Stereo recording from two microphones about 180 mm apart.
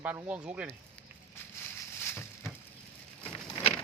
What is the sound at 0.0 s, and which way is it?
Speech, 10° right (ahead or behind).